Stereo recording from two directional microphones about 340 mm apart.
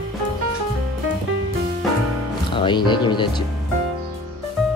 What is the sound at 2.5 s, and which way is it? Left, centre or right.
Speech, centre.